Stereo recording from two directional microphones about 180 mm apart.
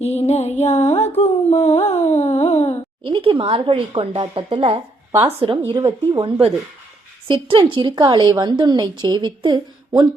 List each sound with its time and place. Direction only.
0.0 s music: 35° left (ahead or behind)
1.9 s a sound: 40° left (ahead or behind)
3.1 s a woman's voice: 30° right (ahead or behind)